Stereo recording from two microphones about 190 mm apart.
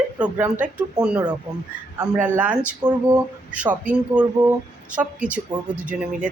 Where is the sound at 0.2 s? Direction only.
10° right (ahead or behind).